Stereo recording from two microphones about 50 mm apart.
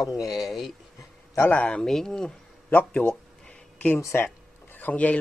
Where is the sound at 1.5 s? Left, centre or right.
Left.